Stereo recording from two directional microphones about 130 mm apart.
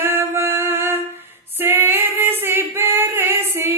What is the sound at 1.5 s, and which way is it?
Female singing, 15° right (ahead or behind).